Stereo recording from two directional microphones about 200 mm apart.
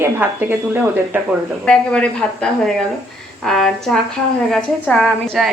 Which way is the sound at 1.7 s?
5° left (ahead or behind).